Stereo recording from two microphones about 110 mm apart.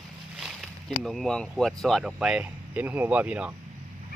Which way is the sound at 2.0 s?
5° right (ahead or behind).